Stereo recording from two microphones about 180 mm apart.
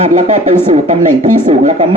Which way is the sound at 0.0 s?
40° right (ahead or behind).